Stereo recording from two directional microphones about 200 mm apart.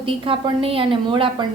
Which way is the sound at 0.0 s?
25° right (ahead or behind).